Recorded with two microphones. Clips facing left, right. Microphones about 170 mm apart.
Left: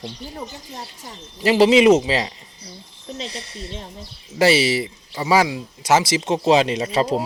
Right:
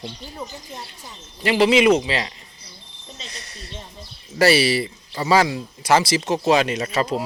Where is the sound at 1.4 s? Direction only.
35° left (ahead or behind).